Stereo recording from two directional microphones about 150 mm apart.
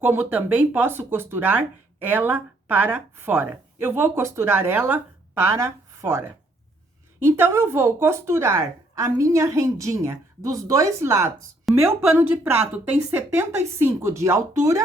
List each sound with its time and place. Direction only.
0.0 s a woman's voice: 10° right (ahead or behind)